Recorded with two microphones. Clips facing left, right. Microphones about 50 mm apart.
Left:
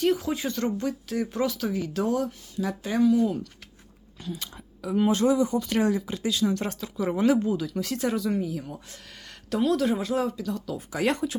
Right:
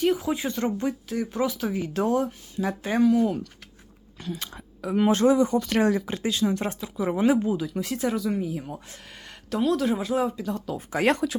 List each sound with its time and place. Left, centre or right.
0.0 s speech: centre
0.4 s speech: right
1.0 s speech: centre
1.5 s speech: right
6.4 s speech: right
7.9 s speech: centre
8.4 s speech: right
9.5 s speech: centre
10.3 s speech: right